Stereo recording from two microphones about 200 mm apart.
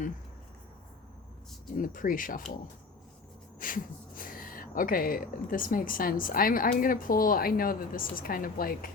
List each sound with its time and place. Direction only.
1.7 s speech: 45° left (ahead or behind)
3.6 s speech: 45° left (ahead or behind)